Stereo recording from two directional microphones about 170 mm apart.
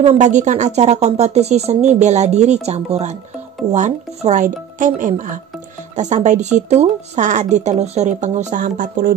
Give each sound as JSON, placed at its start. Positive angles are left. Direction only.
{"t": 0.0, "sound": "a woman's voice", "side_deg": -45}